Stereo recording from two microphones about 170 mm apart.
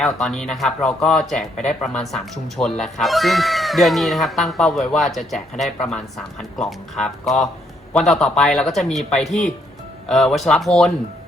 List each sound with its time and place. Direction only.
0.0 s speech: 5° left (ahead or behind)